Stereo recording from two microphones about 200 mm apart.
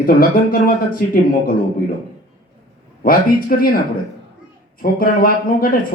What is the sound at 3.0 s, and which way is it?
Speech, 45° left (ahead or behind).